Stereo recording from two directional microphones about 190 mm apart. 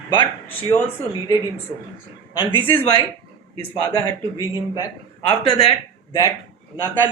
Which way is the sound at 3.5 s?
20° left (ahead or behind).